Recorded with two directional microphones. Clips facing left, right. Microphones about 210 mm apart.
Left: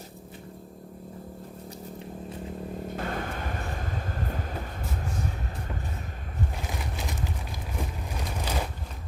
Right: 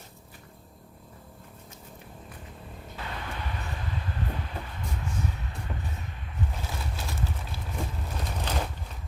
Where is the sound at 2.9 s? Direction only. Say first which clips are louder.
Left 3 dB; 50° left (ahead or behind).